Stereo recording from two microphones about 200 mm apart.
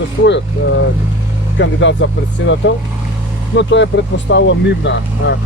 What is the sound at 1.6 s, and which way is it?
Speech, 65° left (ahead or behind).